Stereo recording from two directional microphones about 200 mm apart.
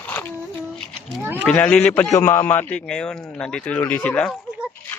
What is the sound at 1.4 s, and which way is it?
A man's voice, 5° left (ahead or behind).